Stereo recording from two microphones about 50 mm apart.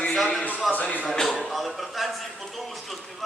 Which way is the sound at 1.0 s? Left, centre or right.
Centre.